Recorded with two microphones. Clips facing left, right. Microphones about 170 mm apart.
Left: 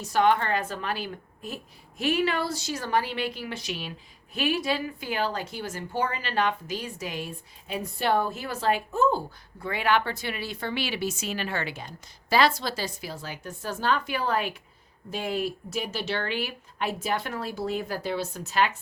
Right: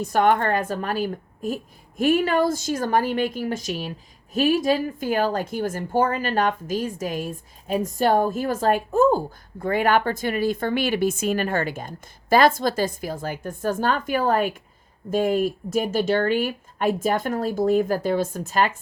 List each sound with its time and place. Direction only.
0.0 s speech: 50° right (ahead or behind)